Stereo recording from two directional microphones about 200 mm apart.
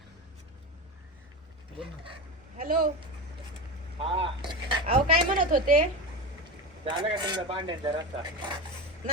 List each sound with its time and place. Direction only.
2.6 s speech: 45° right (ahead or behind)
3.9 s speech: 30° right (ahead or behind)
5.3 s speech: 40° right (ahead or behind)
6.8 s speech: 25° right (ahead or behind)